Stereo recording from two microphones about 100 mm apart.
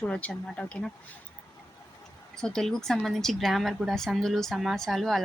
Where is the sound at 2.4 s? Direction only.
5° left (ahead or behind).